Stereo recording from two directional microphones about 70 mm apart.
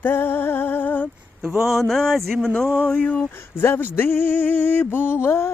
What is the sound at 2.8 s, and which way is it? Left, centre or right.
Speech, left.